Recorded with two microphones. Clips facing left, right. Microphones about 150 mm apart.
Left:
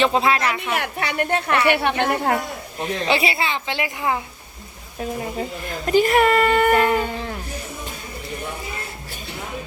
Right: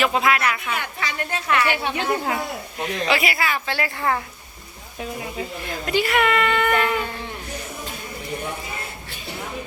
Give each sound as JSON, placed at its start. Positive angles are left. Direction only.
{"t": 0.0, "sound": "speech", "side_deg": 30}
{"t": 0.7, "sound": "a woman's voice", "side_deg": 70}
{"t": 2.8, "sound": "speech", "side_deg": 30}
{"t": 4.9, "sound": "a woman's voice", "side_deg": 35}